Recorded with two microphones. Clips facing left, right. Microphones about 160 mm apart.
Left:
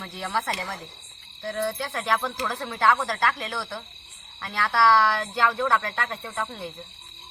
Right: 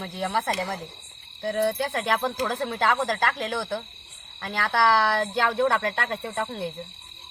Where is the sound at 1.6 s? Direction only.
60° right (ahead or behind).